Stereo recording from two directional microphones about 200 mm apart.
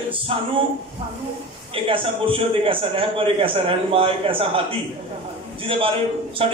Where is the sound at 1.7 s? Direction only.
25° right (ahead or behind).